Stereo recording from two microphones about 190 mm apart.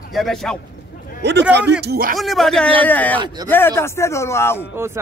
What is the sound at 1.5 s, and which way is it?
Speech, 65° right (ahead or behind).